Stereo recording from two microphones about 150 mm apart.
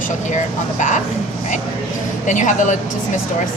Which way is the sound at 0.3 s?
55° left (ahead or behind).